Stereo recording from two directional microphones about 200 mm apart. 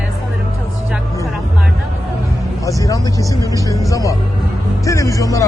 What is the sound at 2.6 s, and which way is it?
Speech, 15° left (ahead or behind).